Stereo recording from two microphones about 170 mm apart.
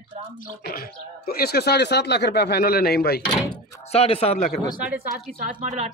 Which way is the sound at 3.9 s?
35° left (ahead or behind).